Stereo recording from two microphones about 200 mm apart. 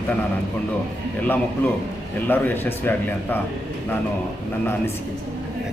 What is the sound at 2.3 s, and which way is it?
Speech, 10° left (ahead or behind).